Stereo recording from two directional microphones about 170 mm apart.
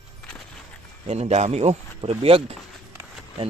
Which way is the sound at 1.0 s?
40° right (ahead or behind).